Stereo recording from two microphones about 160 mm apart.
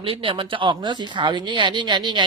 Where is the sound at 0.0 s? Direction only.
35° right (ahead or behind).